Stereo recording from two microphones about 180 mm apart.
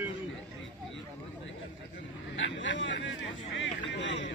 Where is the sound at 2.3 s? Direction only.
90° left.